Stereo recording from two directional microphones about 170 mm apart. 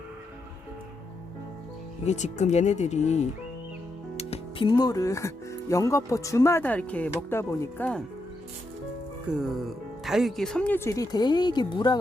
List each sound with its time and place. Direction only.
2.0 s speech: 40° left (ahead or behind); by 8.0 s 10° left (ahead or behind)
9.4 s speech: centre (ahead or behind); by 11.9 s 25° left (ahead or behind)